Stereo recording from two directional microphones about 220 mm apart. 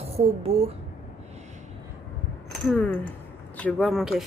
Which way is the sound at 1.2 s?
30° right (ahead or behind).